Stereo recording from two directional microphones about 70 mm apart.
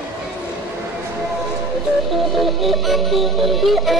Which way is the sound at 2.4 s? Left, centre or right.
Centre.